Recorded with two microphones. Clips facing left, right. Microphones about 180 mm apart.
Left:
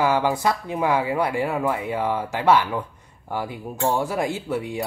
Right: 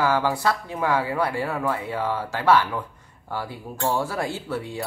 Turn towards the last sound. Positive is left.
turn(degrees=15)  # may be behind; listen again after turning